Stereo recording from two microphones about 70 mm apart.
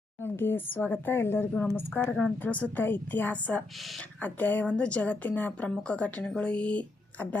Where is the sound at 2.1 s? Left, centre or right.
Centre.